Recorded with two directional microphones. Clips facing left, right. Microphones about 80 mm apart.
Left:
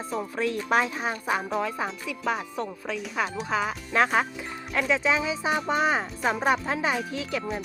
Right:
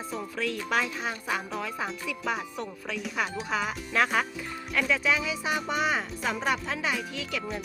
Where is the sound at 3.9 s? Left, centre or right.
Left.